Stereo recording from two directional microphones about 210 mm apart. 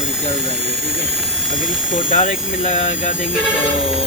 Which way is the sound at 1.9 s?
40° left (ahead or behind).